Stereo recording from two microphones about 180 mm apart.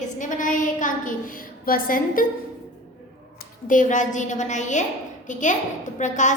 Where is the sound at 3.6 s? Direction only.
45° left (ahead or behind).